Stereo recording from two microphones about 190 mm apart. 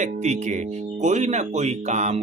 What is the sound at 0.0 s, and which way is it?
Speech, 40° right (ahead or behind).